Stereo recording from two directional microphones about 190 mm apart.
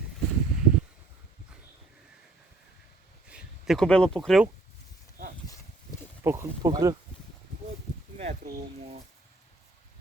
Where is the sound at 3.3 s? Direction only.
5° right (ahead or behind).